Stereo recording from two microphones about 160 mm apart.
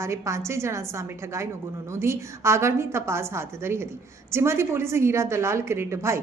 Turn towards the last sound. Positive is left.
turn(degrees=-15)  # may be behind; listen again after turning